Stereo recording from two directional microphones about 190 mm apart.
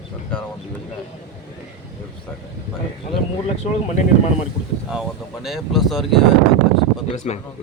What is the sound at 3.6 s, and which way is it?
Speech, 35° left (ahead or behind).